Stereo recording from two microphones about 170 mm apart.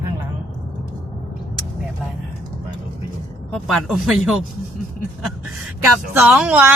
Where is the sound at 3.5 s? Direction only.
Centre (ahead or behind).